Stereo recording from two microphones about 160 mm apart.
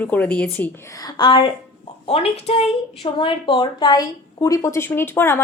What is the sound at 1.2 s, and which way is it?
A woman's voice, 30° left (ahead or behind).